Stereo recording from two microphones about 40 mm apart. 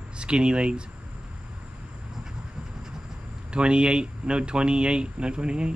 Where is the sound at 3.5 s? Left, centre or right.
Right.